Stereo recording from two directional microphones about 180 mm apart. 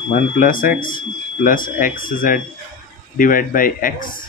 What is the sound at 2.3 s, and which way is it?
Speech, 50° left (ahead or behind).